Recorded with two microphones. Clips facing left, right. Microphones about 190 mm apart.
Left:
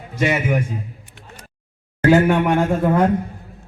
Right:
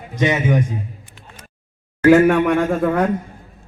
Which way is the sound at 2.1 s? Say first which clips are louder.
Right 2 dB; 70° right (ahead or behind).